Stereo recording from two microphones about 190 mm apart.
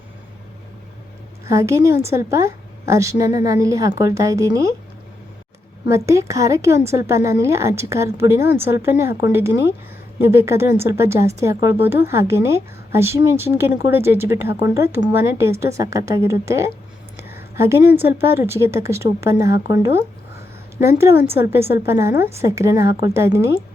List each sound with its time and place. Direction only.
1.5 s speech: 15° right (ahead or behind)
5.9 s speech: 15° right (ahead or behind)
17.2 s a sound: 10° right (ahead or behind)
17.9 s speech: 10° right (ahead or behind)